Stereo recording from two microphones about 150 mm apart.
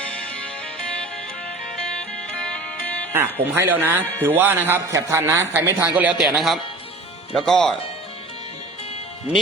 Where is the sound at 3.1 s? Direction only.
15° right (ahead or behind); by 7.8 s 5° left (ahead or behind).